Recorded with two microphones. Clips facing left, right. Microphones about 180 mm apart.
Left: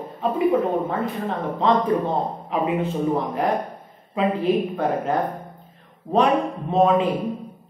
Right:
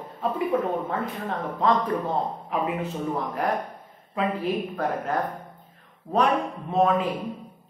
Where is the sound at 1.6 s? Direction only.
25° left (ahead or behind).